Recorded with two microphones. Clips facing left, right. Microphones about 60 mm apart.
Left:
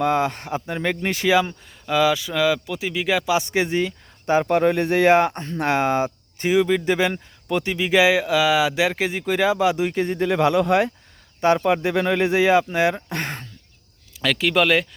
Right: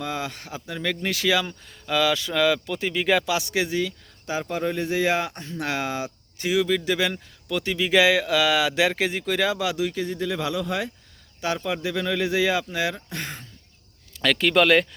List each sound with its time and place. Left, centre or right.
0.0 s speech: left
1.9 s speech: centre
3.2 s speech: left
13.1 s speech: left
14.2 s speech: centre